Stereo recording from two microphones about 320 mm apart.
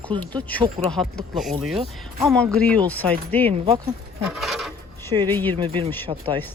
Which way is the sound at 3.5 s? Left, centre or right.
Centre.